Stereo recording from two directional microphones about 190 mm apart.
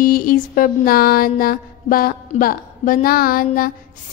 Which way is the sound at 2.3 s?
45° left (ahead or behind).